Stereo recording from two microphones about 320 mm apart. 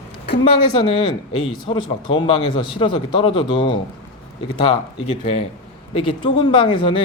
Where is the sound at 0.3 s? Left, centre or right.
Centre.